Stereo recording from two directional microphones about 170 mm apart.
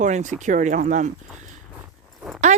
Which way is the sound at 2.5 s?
45° right (ahead or behind).